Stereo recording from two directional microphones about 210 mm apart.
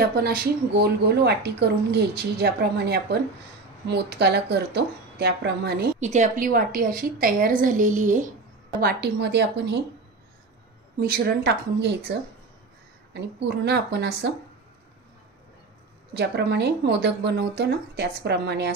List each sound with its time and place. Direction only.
0.1 s speech: 45° right (ahead or behind)
5.9 s a woman's voice: 35° right (ahead or behind)
8.8 s a woman's voice: 50° right (ahead or behind)
11.0 s speech: 45° right (ahead or behind)
13.1 s speech: 50° right (ahead or behind)
16.1 s speech: 50° right (ahead or behind)